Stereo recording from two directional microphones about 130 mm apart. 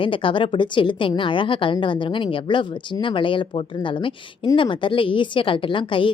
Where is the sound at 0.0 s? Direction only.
40° left (ahead or behind).